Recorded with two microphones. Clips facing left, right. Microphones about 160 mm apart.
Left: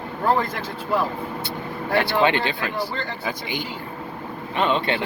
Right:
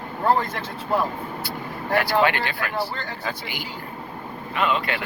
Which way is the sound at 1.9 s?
25° left (ahead or behind).